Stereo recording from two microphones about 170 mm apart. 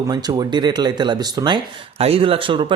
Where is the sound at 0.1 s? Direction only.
25° right (ahead or behind).